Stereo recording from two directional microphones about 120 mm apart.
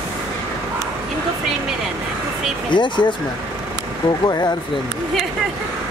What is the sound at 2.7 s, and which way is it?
Speech, 40° left (ahead or behind).